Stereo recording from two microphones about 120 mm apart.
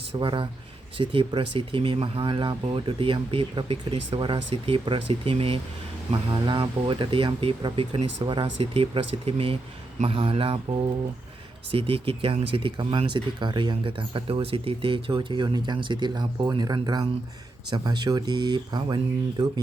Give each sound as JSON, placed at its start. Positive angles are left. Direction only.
{"t": 0.2, "sound": "speech", "side_deg": -45}
{"t": 6.1, "sound": "speech", "side_deg": -40}